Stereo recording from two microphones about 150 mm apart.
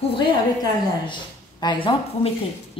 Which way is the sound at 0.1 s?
30° left (ahead or behind).